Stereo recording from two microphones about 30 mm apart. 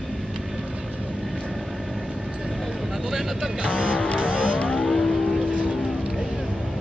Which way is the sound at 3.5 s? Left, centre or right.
Left.